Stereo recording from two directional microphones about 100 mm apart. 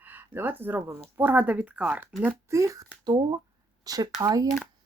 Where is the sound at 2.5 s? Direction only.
30° right (ahead or behind).